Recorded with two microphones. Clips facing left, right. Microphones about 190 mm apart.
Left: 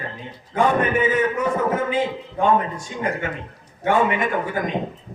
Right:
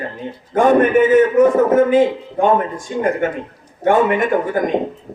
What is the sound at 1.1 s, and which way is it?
A man's voice, 55° right (ahead or behind).